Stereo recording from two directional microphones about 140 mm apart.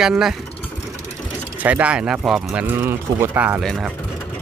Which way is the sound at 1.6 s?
10° right (ahead or behind).